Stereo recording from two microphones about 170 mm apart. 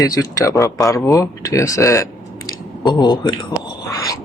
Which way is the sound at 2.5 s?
25° left (ahead or behind).